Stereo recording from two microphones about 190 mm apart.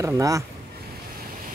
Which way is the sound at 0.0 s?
15° right (ahead or behind).